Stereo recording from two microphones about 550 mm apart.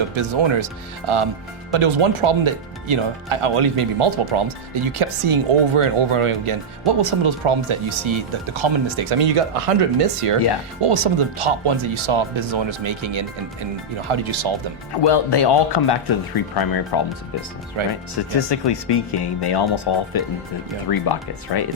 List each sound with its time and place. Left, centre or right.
0.2 s speech: right
15.0 s speech: left
17.8 s speech: right
18.3 s speech: left